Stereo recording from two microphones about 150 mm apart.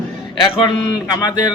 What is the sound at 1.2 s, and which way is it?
Speech, 30° left (ahead or behind).